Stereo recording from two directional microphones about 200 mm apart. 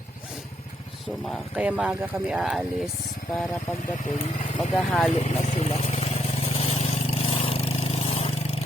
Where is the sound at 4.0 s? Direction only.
30° left (ahead or behind).